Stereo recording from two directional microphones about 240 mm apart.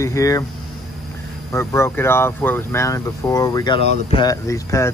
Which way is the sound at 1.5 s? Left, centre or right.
Centre.